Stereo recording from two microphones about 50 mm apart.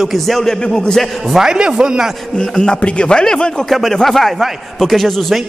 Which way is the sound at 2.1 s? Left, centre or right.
Centre.